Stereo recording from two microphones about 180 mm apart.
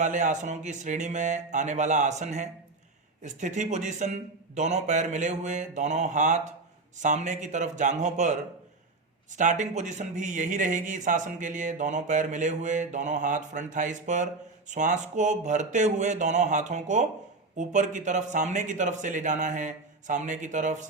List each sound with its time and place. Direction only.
0.0 s speech: 45° right (ahead or behind)